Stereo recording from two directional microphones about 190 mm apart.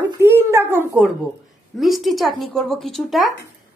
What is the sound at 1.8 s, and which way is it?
Speech, centre (ahead or behind).